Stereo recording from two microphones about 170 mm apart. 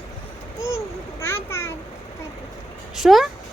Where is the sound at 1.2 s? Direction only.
15° left (ahead or behind).